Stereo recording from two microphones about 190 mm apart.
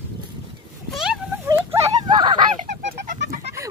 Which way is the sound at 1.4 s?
15° right (ahead or behind).